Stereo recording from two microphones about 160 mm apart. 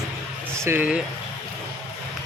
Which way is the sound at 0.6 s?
15° right (ahead or behind).